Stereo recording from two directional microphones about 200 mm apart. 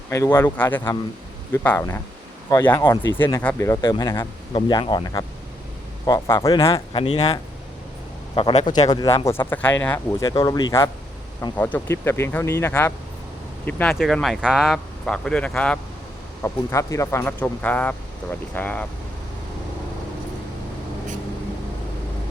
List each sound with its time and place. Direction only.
0.1 s speech: 15° left (ahead or behind)
8.4 s speech: 25° left (ahead or behind); by 18.9 s 5° left (ahead or behind)